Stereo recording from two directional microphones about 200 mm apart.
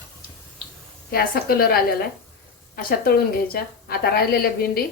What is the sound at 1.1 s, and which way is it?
A woman's voice, 50° left (ahead or behind).